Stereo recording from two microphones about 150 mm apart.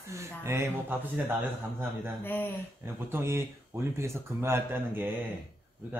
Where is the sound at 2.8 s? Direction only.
15° right (ahead or behind).